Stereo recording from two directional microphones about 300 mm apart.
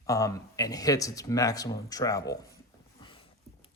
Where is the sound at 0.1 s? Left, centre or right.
Centre.